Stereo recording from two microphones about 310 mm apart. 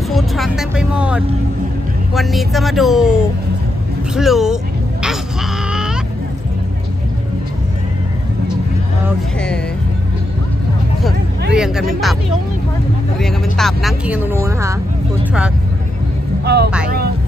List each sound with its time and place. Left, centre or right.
0.1 s speech: centre
9.0 s speech: centre
11.5 s speech: centre
13.2 s speech: centre
16.4 s speech: right